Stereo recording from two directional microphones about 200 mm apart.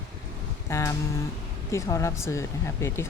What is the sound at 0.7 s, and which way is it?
Speech, 15° left (ahead or behind).